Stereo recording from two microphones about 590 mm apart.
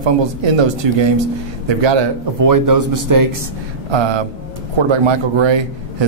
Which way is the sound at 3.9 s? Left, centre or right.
Right.